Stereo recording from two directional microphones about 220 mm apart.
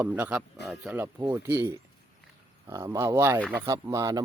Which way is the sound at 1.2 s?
20° right (ahead or behind).